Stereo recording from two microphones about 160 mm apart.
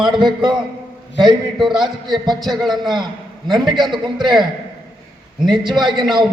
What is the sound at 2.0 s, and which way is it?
A man's voice, 25° right (ahead or behind).